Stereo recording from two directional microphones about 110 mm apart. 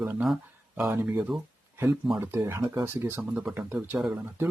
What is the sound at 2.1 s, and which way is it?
Speech, 20° right (ahead or behind).